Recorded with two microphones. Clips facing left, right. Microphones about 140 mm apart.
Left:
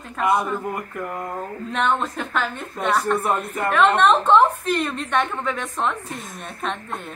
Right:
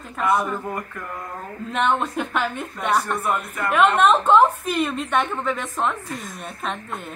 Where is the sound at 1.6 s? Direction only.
5° right (ahead or behind).